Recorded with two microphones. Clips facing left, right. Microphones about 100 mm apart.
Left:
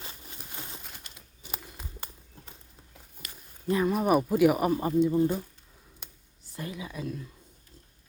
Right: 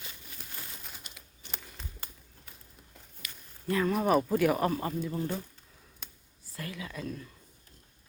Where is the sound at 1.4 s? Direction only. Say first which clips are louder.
Left 3 dB; 5° left (ahead or behind).